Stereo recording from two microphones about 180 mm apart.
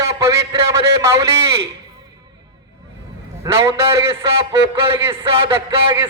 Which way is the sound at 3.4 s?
15° right (ahead or behind).